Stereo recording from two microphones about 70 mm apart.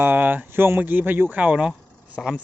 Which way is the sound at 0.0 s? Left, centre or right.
Right.